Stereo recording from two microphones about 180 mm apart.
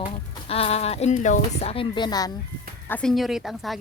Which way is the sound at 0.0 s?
35° left (ahead or behind).